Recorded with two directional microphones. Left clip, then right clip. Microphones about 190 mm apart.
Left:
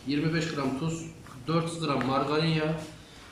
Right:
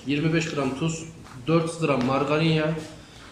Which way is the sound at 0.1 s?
10° right (ahead or behind).